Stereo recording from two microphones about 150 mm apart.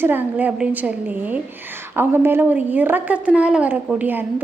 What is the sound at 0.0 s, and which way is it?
A woman's voice, 15° right (ahead or behind).